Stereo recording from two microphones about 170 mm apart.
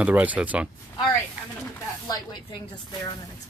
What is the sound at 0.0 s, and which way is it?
Speech, 10° right (ahead or behind).